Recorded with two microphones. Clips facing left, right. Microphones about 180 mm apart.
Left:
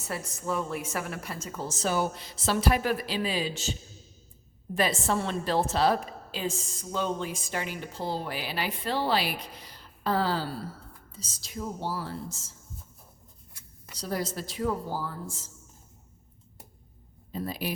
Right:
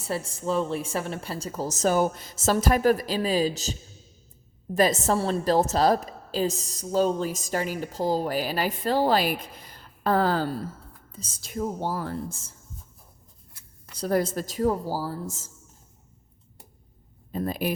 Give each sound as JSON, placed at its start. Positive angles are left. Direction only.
{"t": 0.0, "sound": "a woman's voice", "side_deg": -30}
{"t": 13.9, "sound": "speech", "side_deg": -55}
{"t": 17.3, "sound": "speech", "side_deg": -50}